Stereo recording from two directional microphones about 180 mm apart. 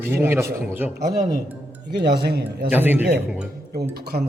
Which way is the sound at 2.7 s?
10° right (ahead or behind).